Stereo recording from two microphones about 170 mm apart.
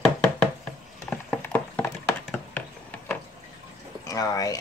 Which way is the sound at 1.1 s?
10° left (ahead or behind).